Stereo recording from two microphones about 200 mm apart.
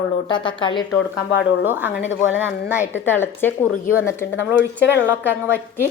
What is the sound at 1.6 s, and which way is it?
A woman's voice, 10° right (ahead or behind).